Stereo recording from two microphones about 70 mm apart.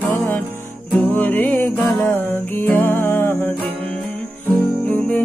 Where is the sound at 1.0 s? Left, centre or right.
Left.